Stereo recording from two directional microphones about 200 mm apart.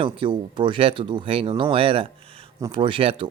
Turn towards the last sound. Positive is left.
turn(degrees=-25)  # may be behind; listen again after turning